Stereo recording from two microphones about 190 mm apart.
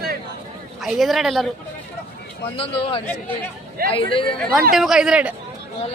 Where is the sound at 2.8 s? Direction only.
30° left (ahead or behind).